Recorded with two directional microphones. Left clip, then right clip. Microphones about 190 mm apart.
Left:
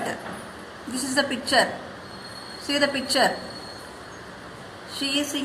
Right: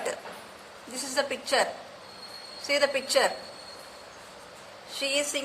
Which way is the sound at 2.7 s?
35° right (ahead or behind).